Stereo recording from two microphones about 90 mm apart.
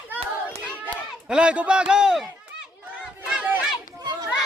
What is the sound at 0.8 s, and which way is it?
Speech, 10° right (ahead or behind).